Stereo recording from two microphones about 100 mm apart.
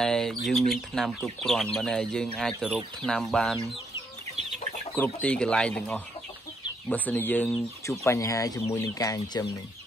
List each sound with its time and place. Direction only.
0.0 s speech: 5° left (ahead or behind)
4.9 s speech: 15° left (ahead or behind)
8.0 s speech: 30° left (ahead or behind)